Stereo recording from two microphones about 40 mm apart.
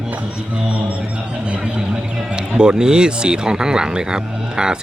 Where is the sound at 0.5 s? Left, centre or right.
Right.